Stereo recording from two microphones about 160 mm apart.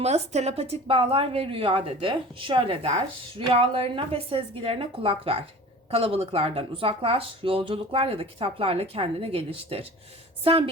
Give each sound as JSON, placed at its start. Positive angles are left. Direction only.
{"t": 0.0, "sound": "speech", "side_deg": -40}